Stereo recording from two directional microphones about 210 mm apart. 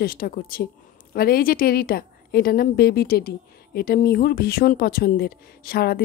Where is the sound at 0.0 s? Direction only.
45° left (ahead or behind).